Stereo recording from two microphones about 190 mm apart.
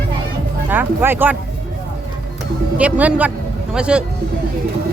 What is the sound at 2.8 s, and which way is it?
Speech, 5° right (ahead or behind).